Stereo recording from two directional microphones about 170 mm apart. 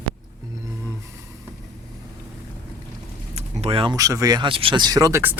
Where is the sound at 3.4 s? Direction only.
40° right (ahead or behind).